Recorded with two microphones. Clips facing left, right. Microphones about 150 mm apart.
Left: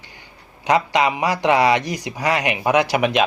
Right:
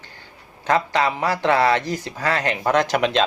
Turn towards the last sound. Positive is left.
turn(degrees=10)  # may be behind; listen again after turning